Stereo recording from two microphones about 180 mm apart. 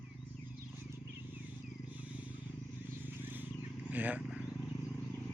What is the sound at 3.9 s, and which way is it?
Wild animals, 10° right (ahead or behind).